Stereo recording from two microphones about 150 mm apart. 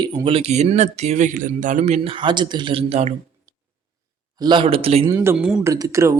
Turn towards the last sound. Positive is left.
turn(degrees=-20)  # may be behind; listen again after turning